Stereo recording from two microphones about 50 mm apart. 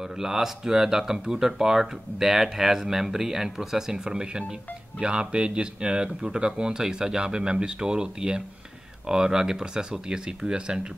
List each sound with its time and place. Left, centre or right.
0.0 s speech: centre